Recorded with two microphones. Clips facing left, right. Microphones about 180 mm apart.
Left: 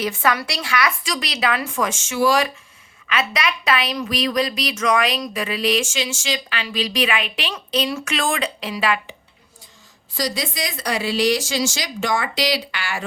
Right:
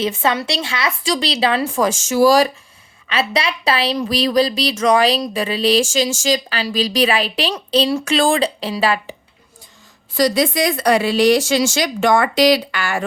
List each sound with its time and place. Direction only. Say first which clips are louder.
0.0 s a woman's voice: right 3 dB; 25° right (ahead or behind)
10.2 s speech: right 9 dB; 60° right (ahead or behind)